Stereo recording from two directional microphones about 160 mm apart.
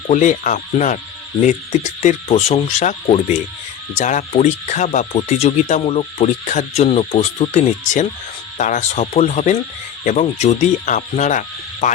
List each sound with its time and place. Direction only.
0.1 s speech: 50° left (ahead or behind)
2.0 s speech: 40° left (ahead or behind)